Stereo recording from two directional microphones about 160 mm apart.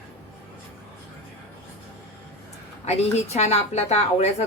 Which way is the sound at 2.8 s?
45° left (ahead or behind).